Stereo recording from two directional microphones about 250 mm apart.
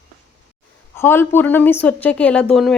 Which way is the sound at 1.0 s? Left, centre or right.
Centre.